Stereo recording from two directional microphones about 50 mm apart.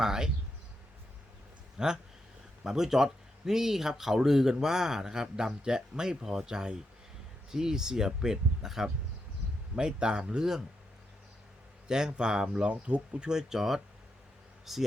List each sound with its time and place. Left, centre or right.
0.0 s speech: centre
1.8 s speech: centre
11.9 s speech: centre